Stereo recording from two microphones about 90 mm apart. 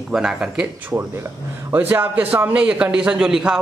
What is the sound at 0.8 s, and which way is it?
A man's voice, 25° right (ahead or behind).